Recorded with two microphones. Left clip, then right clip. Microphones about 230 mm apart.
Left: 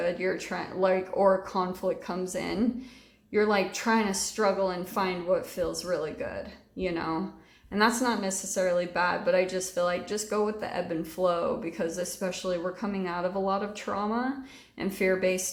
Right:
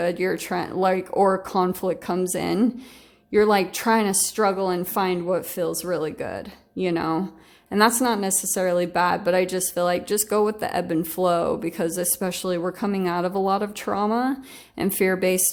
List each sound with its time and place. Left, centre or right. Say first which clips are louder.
0.0 s a woman's voice: right 5 dB; right